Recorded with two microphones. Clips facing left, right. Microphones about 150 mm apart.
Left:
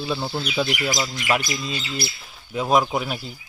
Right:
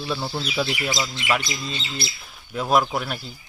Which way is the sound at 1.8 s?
25° right (ahead or behind).